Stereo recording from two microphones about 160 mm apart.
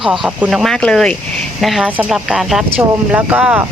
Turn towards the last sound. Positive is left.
turn(degrees=-10)  # may be behind; listen again after turning